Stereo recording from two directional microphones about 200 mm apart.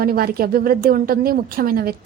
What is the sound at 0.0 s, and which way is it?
A woman's voice, 50° right (ahead or behind).